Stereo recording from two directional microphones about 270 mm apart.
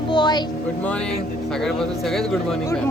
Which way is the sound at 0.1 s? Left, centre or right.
Centre.